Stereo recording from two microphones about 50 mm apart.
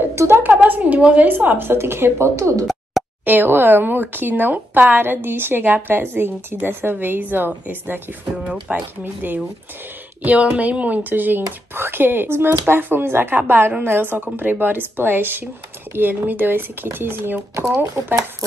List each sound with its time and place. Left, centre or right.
0.1 s a sound: right
0.4 s a woman's voice: right
2.6 s plop: centre
3.3 s speech: right
8.4 s speech: centre
9.0 s speech: right
18.0 s speech: right